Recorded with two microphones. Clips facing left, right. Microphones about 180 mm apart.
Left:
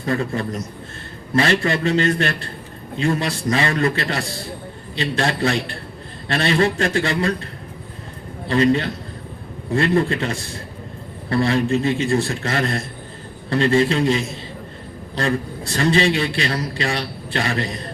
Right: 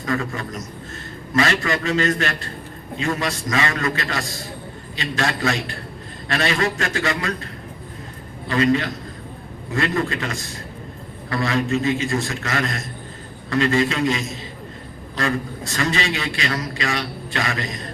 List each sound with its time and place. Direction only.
0.0 s a man's voice: 30° left (ahead or behind)
8.4 s a man's voice: 30° left (ahead or behind)